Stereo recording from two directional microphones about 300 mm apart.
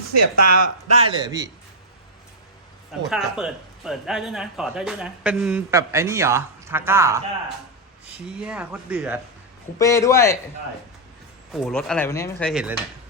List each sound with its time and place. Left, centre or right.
0.1 s speech: right
1.0 s a man's voice: centre
3.1 s speech: centre
8.4 s speech: centre
9.7 s a man's voice: centre
11.5 s speech: centre